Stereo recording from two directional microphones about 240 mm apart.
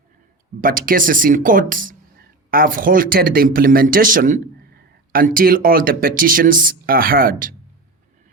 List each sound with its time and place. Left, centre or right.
0.6 s speech: right